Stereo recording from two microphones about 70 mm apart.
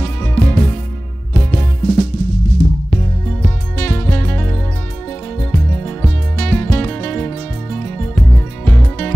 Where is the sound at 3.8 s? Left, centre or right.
Left.